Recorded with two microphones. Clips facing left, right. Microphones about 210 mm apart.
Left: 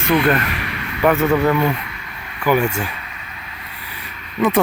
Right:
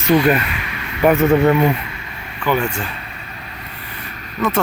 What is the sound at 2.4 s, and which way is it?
Speech, 10° left (ahead or behind).